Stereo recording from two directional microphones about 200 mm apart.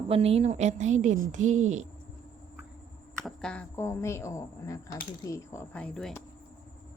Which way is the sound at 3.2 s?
5° left (ahead or behind).